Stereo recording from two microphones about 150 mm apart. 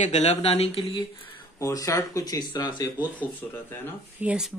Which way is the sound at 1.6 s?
20° left (ahead or behind).